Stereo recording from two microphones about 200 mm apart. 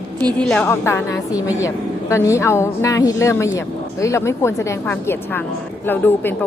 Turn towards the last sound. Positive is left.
turn(degrees=10)  # may be behind; listen again after turning